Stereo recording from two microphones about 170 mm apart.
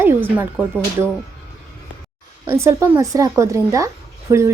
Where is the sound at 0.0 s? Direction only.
10° right (ahead or behind).